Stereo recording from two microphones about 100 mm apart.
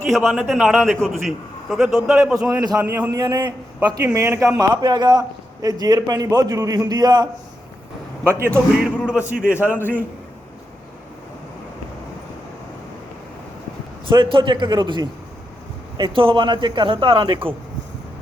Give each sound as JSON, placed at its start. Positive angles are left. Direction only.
{"t": 0.1, "sound": "a man's voice", "side_deg": 0}
{"t": 3.1, "sound": "a man's voice", "side_deg": -35}
{"t": 4.0, "sound": "speech", "side_deg": -30}
{"t": 4.7, "sound": "a man's voice", "side_deg": -45}
{"t": 8.2, "sound": "speech", "side_deg": -25}
{"t": 9.0, "sound": "speech", "side_deg": -10}
{"t": 9.6, "sound": "a man's voice", "side_deg": 20}
{"t": 14.1, "sound": "a man's voice", "side_deg": -55}